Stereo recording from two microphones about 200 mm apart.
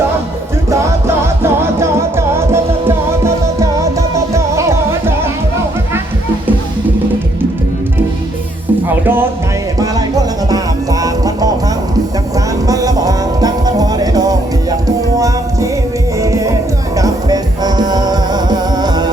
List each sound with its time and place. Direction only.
0.7 s music: 15° right (ahead or behind)
8.9 s music: 10° right (ahead or behind)
11.0 s music: 20° right (ahead or behind)
12.6 s music: 15° right (ahead or behind)
16.2 s music: 15° right (ahead or behind)